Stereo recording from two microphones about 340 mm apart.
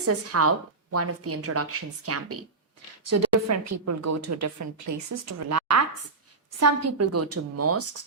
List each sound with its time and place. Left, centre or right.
0.0 s a woman's voice: right